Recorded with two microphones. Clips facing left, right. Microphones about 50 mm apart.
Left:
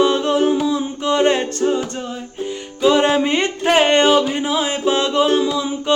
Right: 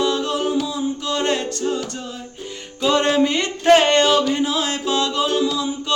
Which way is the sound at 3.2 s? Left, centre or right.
Left.